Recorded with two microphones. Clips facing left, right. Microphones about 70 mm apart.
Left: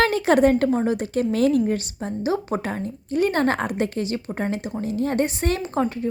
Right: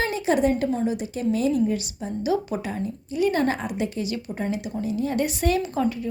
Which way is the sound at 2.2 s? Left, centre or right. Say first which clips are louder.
Left 1 dB; left.